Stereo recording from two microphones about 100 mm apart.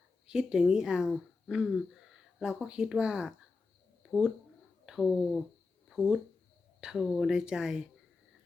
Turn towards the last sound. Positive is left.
turn(degrees=-5)  # may be behind; listen again after turning